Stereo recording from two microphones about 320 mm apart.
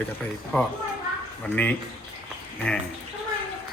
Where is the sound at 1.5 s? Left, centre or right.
Centre.